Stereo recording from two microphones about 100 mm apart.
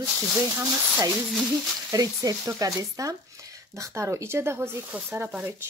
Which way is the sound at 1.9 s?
35° right (ahead or behind).